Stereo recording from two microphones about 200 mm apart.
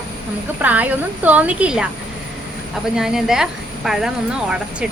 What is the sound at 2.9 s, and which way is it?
A woman's voice, 5° right (ahead or behind).